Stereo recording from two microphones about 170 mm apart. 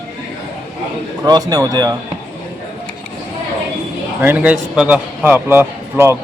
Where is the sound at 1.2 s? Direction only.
20° right (ahead or behind).